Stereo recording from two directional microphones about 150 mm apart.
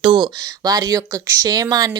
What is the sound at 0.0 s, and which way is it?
A woman's voice, 30° right (ahead or behind).